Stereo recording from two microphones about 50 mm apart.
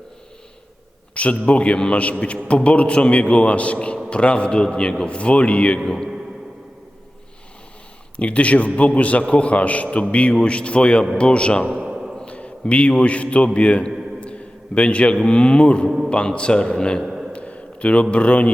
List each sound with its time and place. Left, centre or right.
1.1 s a man's voice: left
5.8 s a man's voice: centre
8.1 s a man's voice: left
11.7 s a sound: right
12.2 s a man's voice: left
17.3 s a sound: left